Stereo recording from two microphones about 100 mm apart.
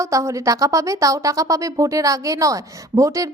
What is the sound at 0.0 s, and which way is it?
Speech, 30° right (ahead or behind).